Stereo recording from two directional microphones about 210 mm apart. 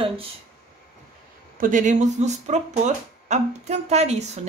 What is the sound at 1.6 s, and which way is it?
Speech, 35° right (ahead or behind).